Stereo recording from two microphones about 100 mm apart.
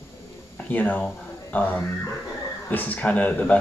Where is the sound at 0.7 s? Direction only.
15° left (ahead or behind).